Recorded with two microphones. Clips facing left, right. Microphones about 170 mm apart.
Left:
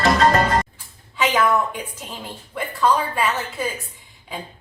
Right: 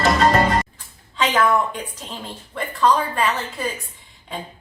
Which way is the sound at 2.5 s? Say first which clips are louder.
Right 1 dB; 5° left (ahead or behind).